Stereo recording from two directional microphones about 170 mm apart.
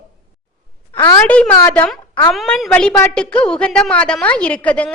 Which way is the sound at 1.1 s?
10° left (ahead or behind).